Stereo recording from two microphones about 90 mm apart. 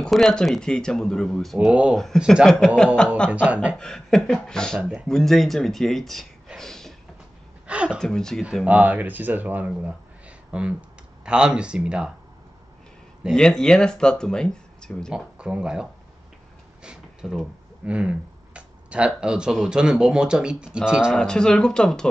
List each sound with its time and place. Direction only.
0.0 s speech: 5° left (ahead or behind)
1.7 s speech: 15° right (ahead or behind)
2.4 s speech: 10° left (ahead or behind)
3.4 s speech: 15° right (ahead or behind)
3.7 s speech: 5° left (ahead or behind)
7.6 s a woman's voice: 10° right (ahead or behind)
8.0 s speech: 5° left (ahead or behind)
8.6 s speech: 20° right (ahead or behind)
13.3 s speech: 5° left (ahead or behind)
15.1 s speech: 10° right (ahead or behind)
16.8 s a sound: 10° right (ahead or behind)
17.8 s speech: 10° right (ahead or behind)
21.2 s speech: 10° left (ahead or behind)